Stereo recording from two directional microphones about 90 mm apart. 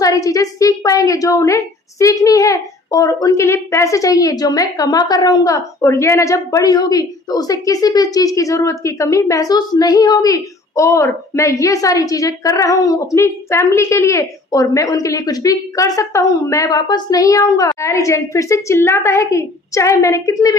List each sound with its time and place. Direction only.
0.0 s a woman's voice: 40° left (ahead or behind)